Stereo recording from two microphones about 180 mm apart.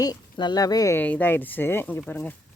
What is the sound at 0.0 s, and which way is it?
Speech, 25° left (ahead or behind).